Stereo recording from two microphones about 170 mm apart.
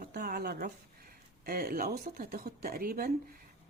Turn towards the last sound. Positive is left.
turn(degrees=-60)  # may be behind; listen again after turning